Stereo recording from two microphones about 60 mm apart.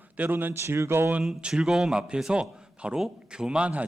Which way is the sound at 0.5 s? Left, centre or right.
Right.